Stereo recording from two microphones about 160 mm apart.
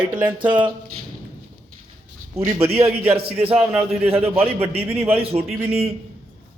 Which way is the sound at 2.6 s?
35° right (ahead or behind).